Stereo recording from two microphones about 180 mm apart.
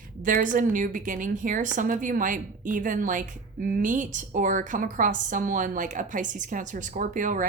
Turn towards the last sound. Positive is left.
turn(degrees=-45)  # may be behind; listen again after turning